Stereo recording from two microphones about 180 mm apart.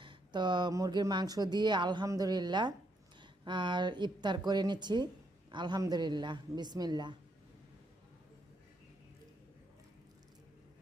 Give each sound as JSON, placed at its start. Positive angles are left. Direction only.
{"t": 0.0, "sound": "speech", "side_deg": -25}